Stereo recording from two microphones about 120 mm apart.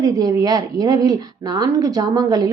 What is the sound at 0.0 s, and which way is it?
A woman's voice, 30° right (ahead or behind).